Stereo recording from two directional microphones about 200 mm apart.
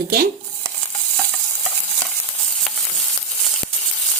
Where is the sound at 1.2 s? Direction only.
Centre (ahead or behind).